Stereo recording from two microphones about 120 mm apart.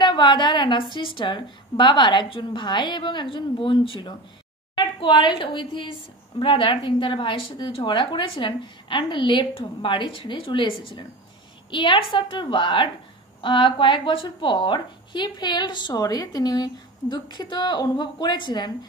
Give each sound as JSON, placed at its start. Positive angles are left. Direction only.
{"t": 0.0, "sound": "a woman's voice", "side_deg": 40}